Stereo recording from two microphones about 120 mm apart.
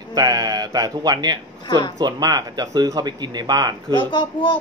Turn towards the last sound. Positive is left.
turn(degrees=40)  # may be behind; listen again after turning